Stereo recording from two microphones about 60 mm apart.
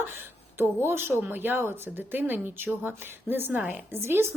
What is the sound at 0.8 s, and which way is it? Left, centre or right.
A woman's voice, right.